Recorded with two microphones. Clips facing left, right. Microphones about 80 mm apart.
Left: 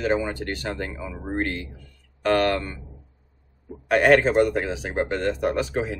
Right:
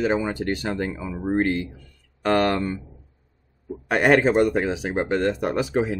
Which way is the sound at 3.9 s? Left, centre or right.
Centre.